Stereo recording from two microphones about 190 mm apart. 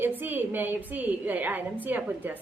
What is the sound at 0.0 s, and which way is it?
A woman's voice, 10° right (ahead or behind).